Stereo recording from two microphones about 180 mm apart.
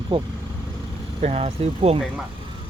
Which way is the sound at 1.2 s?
35° right (ahead or behind).